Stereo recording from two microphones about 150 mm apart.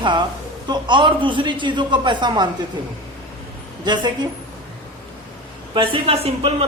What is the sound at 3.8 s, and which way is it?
Speech, 30° right (ahead or behind).